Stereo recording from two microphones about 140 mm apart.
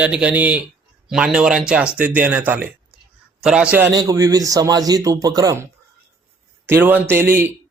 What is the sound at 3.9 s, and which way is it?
A man's voice, 25° right (ahead or behind).